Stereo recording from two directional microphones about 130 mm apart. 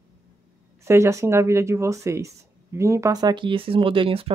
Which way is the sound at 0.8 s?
20° right (ahead or behind).